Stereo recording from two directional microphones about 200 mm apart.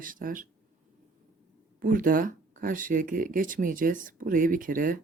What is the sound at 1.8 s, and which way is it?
Speech, 45° right (ahead or behind).